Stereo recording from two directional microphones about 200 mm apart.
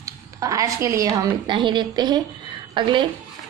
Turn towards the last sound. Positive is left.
turn(degrees=-25)  # may be behind; listen again after turning